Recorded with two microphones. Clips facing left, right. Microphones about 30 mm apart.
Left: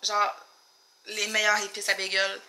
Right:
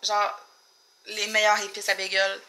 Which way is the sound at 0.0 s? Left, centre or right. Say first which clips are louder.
Right 1 dB; centre.